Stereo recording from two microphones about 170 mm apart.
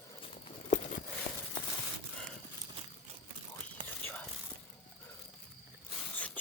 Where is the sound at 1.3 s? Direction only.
15° left (ahead or behind).